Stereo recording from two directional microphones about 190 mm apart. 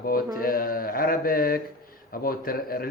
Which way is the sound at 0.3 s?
50° left (ahead or behind).